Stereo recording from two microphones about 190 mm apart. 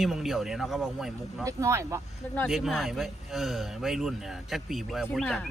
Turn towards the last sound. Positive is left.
turn(degrees=5)  # may be behind; listen again after turning